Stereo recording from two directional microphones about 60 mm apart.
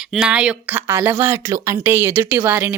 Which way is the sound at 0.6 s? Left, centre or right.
Right.